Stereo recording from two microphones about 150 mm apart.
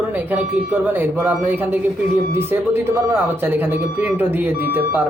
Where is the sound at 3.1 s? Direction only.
15° right (ahead or behind).